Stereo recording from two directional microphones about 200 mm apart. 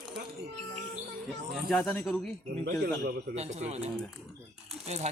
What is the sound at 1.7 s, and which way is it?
Speech, centre (ahead or behind).